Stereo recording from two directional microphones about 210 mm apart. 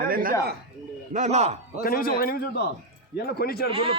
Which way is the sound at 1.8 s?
45° left (ahead or behind).